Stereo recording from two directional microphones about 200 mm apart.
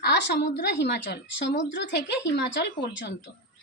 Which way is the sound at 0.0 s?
55° left (ahead or behind).